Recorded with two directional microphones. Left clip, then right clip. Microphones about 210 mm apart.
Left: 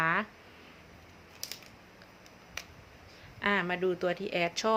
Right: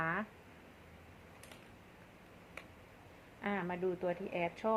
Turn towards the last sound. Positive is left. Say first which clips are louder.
# left 7 dB
turn(degrees=35)  # may be behind; listen again after turning